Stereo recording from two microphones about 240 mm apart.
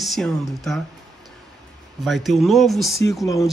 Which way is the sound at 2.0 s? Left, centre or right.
Centre.